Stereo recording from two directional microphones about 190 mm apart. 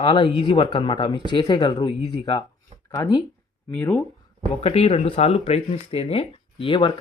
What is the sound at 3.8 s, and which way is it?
Speech, 10° left (ahead or behind).